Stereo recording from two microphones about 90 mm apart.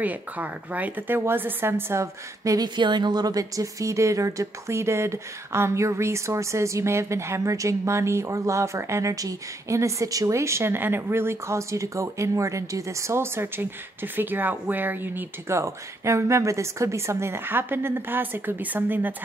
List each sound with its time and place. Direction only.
0.0 s speech: 15° right (ahead or behind)